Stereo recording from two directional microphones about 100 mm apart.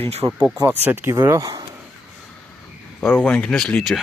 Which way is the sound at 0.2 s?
25° right (ahead or behind).